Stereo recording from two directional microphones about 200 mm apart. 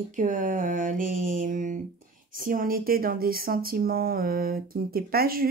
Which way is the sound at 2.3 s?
45° right (ahead or behind).